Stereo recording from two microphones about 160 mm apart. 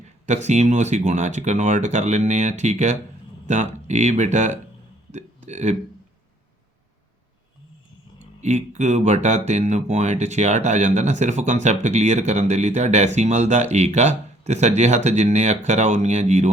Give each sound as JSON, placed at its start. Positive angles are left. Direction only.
{"t": 0.3, "sound": "speech", "side_deg": -45}
{"t": 8.4, "sound": "speech", "side_deg": -45}